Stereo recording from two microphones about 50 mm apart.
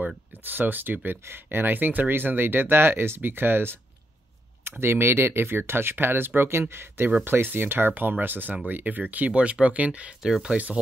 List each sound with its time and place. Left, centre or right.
0.3 s speech: right